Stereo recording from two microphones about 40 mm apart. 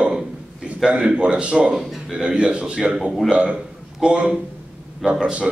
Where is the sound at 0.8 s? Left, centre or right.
Right.